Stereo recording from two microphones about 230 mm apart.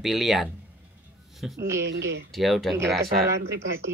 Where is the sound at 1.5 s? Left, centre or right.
Centre.